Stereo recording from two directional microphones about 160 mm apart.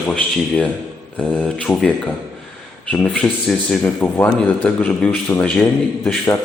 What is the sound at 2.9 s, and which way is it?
Speech, 5° left (ahead or behind).